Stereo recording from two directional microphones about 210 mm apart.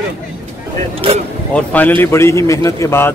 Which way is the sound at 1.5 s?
5° left (ahead or behind).